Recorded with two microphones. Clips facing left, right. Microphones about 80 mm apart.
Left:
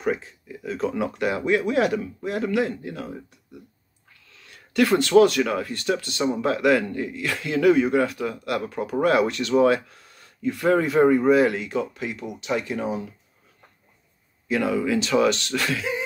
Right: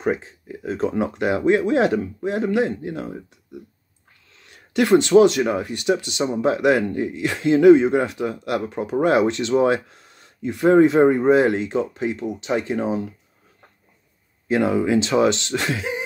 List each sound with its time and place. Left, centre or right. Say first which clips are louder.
0.0 s speech: right 3 dB; right
4.4 s speech: right 1 dB; right
14.5 s speech: right 4 dB; right